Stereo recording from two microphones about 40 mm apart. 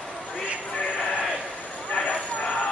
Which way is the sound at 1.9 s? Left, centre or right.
Left.